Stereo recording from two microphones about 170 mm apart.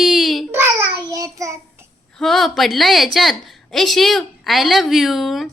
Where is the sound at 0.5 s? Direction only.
15° right (ahead or behind).